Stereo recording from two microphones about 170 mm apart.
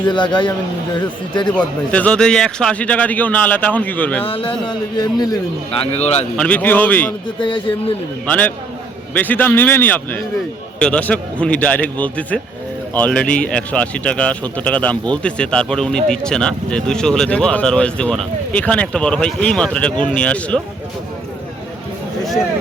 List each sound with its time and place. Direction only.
0.1 s speech: 25° left (ahead or behind)
1.5 s a man's voice: 5° left (ahead or behind)
4.3 s speech: 30° left (ahead or behind)
5.8 s speech: 40° left (ahead or behind)
6.3 s a man's voice: 5° left (ahead or behind)
7.3 s speech: 30° left (ahead or behind)
8.3 s a man's voice: 10° left (ahead or behind)